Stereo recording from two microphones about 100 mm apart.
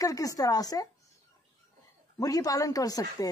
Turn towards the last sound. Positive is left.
turn(degrees=40)  # may be behind; listen again after turning